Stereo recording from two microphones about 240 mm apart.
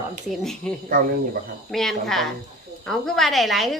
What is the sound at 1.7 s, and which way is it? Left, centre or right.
A woman's voice, centre.